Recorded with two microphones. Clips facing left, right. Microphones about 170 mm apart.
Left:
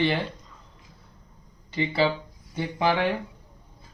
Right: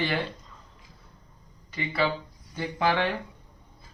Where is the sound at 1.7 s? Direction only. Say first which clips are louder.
Left 4 dB; 30° left (ahead or behind).